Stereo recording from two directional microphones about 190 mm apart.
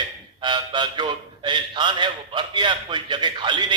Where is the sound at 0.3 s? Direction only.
25° right (ahead or behind).